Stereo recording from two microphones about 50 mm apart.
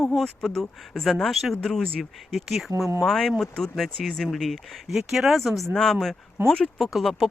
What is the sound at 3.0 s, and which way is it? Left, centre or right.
Speech, centre.